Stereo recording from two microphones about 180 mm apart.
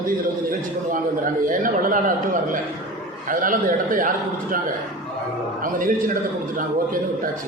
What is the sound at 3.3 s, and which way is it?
A man's voice, 50° right (ahead or behind).